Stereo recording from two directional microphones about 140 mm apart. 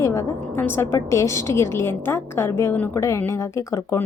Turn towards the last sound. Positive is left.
turn(degrees=20)  # may be behind; listen again after turning